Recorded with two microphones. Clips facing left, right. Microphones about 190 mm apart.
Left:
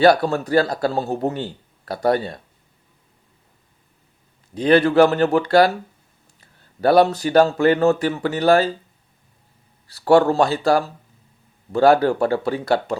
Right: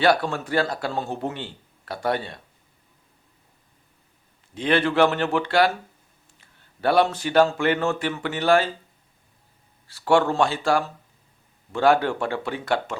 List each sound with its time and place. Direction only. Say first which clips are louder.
0.0 s a man's voice: left 6 dB; 40° left (ahead or behind)
4.5 s a man's voice: left 7 dB; 40° left (ahead or behind)
6.8 s a man's voice: left 5 dB; 40° left (ahead or behind)
9.8 s a man's voice: left 5 dB; 40° left (ahead or behind)